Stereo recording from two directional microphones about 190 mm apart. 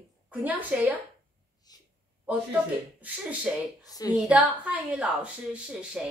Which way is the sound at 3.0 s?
5° right (ahead or behind).